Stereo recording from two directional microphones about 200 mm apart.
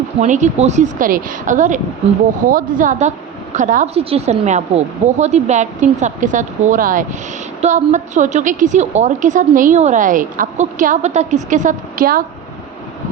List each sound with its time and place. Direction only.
0.2 s a woman's voice: 35° right (ahead or behind)